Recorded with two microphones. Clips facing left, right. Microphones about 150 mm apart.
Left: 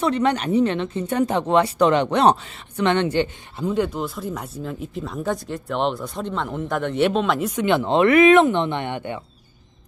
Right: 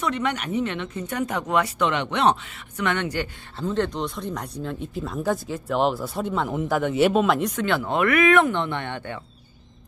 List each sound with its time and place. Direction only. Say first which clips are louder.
0.0 s speech: left 6 dB; 35° left (ahead or behind)
3.5 s speech: left 2 dB; 10° left (ahead or behind)
7.5 s speech: left 5 dB; 20° left (ahead or behind)